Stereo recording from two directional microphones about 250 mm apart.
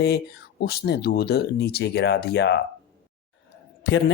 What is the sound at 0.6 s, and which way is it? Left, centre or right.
Speech, left.